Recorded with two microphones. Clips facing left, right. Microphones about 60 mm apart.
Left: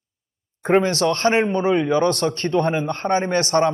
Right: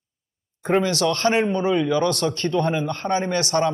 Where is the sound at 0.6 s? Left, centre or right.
Left.